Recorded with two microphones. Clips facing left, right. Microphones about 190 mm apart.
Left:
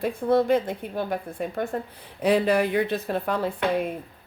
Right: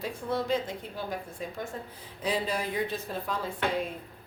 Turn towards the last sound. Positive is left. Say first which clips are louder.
# left 6 dB
turn(degrees=65)  # may be behind; listen again after turning